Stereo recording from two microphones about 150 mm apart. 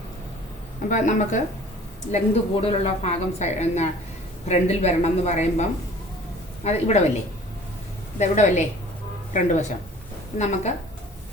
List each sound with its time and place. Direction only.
0.9 s speech: 55° left (ahead or behind)
2.1 s a woman's voice: 45° left (ahead or behind)
6.7 s a woman's voice: 50° left (ahead or behind)
8.2 s a woman's voice: 50° left (ahead or behind)